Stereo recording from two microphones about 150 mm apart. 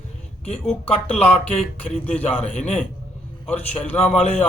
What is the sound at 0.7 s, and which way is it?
Speech, 10° left (ahead or behind).